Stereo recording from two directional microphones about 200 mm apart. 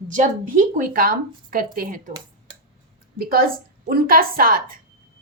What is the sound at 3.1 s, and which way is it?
A woman's voice, 45° right (ahead or behind).